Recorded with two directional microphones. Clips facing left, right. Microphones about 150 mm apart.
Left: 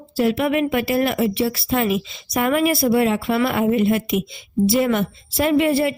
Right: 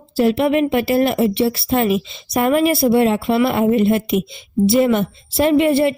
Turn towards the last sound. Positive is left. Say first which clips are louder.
# right 3 dB
turn(degrees=-25)  # may be behind; listen again after turning